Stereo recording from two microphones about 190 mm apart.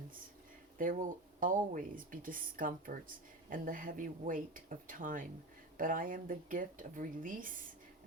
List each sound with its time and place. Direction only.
0.8 s speech: 45° right (ahead or behind)